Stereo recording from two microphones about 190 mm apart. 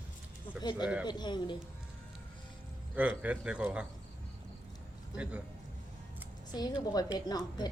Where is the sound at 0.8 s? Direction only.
5° right (ahead or behind).